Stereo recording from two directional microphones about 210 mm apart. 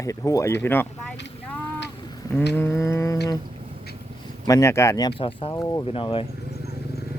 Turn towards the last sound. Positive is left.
turn(degrees=25)  # may be behind; listen again after turning